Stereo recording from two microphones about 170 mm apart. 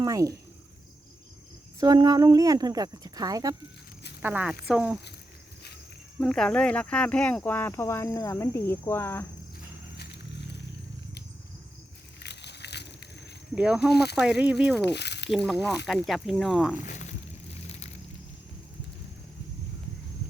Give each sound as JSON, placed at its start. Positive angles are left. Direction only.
{"t": 0.0, "sound": "a woman's voice", "side_deg": -20}
{"t": 1.8, "sound": "a woman's voice", "side_deg": -25}
{"t": 4.2, "sound": "speech", "side_deg": -10}
{"t": 6.1, "sound": "speech", "side_deg": 5}
{"t": 12.2, "sound": "a sound", "side_deg": 85}
{"t": 13.6, "sound": "speech", "side_deg": -5}
{"t": 13.9, "sound": "speech", "side_deg": 75}
{"t": 14.2, "sound": "speech", "side_deg": -5}
{"t": 14.8, "sound": "a sound", "side_deg": 80}
{"t": 15.4, "sound": "speech", "side_deg": 0}
{"t": 16.8, "sound": "a sound", "side_deg": 45}